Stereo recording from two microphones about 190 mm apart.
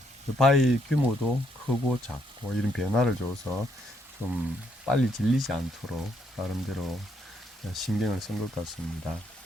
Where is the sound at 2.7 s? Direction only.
Centre (ahead or behind).